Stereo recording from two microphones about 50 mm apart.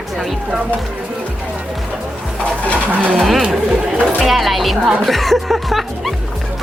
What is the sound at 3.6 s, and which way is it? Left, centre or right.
Speech, centre.